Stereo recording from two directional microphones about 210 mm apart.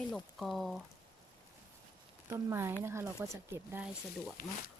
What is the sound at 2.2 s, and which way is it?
Speech, 10° right (ahead or behind).